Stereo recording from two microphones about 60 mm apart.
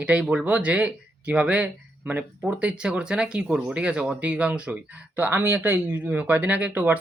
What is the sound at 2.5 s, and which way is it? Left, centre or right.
Speech, centre.